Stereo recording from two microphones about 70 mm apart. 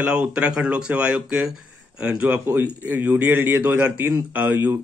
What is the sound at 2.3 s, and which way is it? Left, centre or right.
A man's voice, right.